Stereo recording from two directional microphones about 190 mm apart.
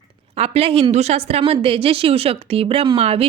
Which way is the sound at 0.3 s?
30° right (ahead or behind).